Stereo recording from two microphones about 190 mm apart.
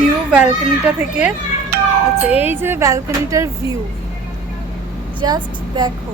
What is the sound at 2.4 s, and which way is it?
Speech, 10° right (ahead or behind).